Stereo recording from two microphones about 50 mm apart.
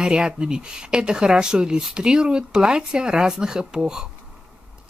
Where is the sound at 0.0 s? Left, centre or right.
Centre.